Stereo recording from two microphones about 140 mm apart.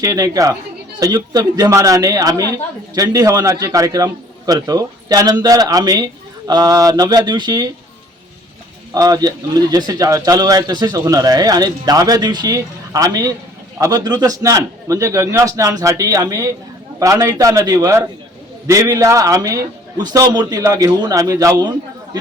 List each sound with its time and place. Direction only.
0.0 s a woman's voice: 25° right (ahead or behind)
8.9 s a woman's voice: 25° right (ahead or behind)